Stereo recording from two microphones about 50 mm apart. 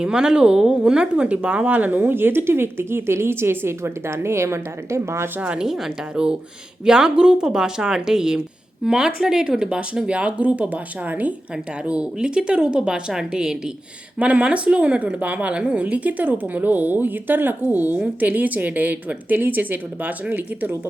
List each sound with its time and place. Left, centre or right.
0.0 s a woman's voice: centre; by 5.3 s right
5.5 s a woman's voice: centre; by 11.3 s right
11.9 s a woman's voice: centre
14.2 s speech: right